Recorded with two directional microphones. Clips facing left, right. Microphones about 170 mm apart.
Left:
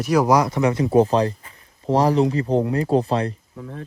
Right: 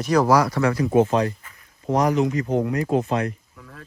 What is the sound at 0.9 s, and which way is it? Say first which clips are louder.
Speech: left 2 dB; 35° left (ahead or behind).